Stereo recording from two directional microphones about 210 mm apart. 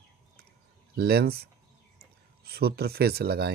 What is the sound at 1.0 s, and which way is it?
Speech, 45° right (ahead or behind).